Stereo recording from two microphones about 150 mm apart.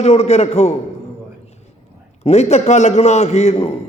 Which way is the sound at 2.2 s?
45° left (ahead or behind).